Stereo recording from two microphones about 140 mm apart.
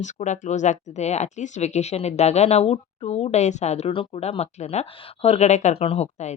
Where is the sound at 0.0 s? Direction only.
60° left (ahead or behind).